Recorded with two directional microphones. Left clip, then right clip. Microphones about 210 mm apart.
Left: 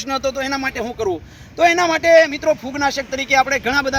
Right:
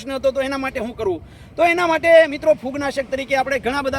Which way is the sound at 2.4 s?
45° right (ahead or behind).